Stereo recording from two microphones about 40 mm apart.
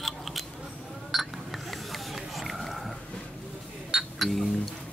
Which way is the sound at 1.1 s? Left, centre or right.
Centre.